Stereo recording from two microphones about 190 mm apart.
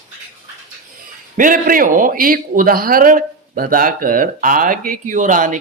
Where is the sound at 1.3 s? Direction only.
45° right (ahead or behind).